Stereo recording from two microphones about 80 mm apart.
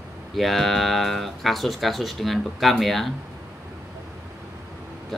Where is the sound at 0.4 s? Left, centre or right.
Centre.